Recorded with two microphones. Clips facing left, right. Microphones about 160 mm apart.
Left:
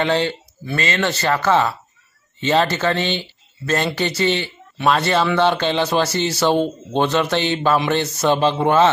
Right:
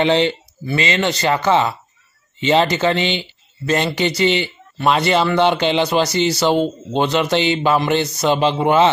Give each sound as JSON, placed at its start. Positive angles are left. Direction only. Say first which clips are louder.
{"t": 0.0, "sound": "a man's voice", "louder": "right 3 dB", "side_deg": -20}